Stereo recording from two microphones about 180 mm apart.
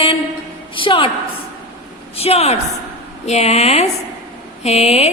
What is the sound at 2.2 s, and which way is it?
A woman's voice, 35° left (ahead or behind).